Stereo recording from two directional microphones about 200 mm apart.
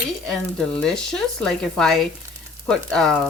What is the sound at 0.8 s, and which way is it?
Speech, 5° left (ahead or behind).